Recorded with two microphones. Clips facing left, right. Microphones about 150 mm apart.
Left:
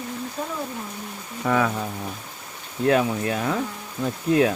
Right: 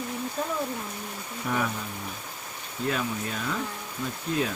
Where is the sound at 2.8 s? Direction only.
80° left.